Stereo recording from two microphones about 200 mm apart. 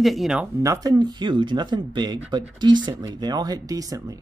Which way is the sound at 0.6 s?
15° right (ahead or behind).